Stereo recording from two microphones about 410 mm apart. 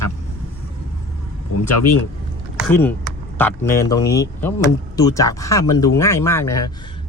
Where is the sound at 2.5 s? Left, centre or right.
Centre.